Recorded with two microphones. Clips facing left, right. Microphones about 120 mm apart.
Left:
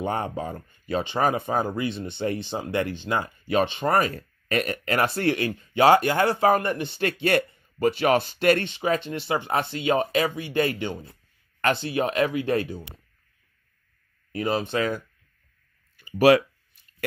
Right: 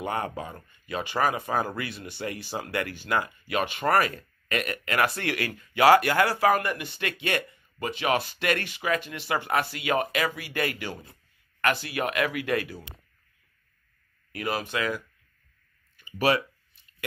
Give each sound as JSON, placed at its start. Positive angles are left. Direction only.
{"t": 0.0, "sound": "speech", "side_deg": 30}
{"t": 4.1, "sound": "speech", "side_deg": 35}
{"t": 14.3, "sound": "speech", "side_deg": 25}
{"t": 16.0, "sound": "a sound", "side_deg": 45}